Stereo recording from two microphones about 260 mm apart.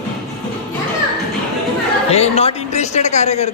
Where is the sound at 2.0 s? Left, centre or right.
Left.